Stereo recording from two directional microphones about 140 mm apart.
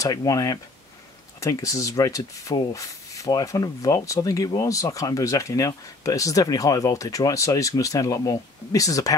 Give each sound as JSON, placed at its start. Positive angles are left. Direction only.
{"t": 0.0, "sound": "speech", "side_deg": 25}